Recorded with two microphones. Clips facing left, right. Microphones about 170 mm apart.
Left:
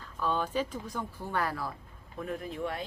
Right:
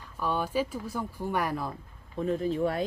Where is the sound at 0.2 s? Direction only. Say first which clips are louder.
Right 2 dB; 10° right (ahead or behind).